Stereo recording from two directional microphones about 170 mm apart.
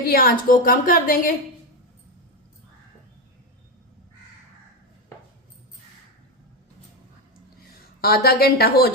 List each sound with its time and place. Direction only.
0.1 s a woman's voice: 60° left (ahead or behind)
8.0 s a woman's voice: 65° left (ahead or behind)